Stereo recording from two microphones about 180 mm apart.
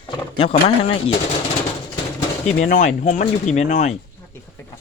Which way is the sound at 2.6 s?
45° left (ahead or behind).